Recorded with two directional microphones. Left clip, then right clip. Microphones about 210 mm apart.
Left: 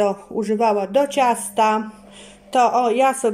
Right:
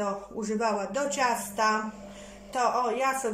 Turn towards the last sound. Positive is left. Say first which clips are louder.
# left 10 dB
turn(degrees=45)  # may be behind; listen again after turning